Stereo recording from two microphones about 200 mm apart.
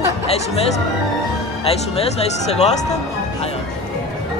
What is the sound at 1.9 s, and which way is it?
Speech, 30° left (ahead or behind).